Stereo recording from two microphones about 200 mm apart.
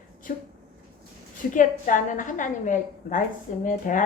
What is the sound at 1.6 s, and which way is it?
A woman's voice, 40° left (ahead or behind).